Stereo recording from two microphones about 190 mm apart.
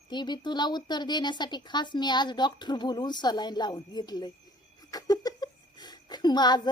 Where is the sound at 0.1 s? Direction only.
25° left (ahead or behind).